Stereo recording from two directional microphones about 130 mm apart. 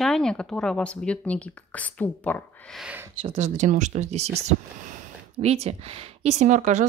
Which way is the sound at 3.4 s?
65° right (ahead or behind).